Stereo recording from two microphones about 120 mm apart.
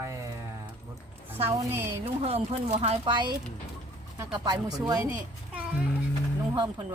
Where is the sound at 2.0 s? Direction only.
60° right (ahead or behind).